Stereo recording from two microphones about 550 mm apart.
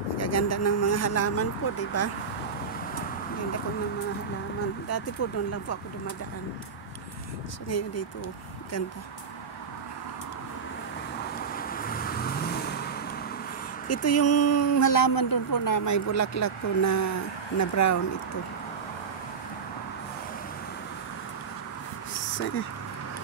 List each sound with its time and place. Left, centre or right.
0.2 s speech: left
5.2 s speech: left
7.7 s speech: left
11.3 s vehicle: centre
13.8 s speech: left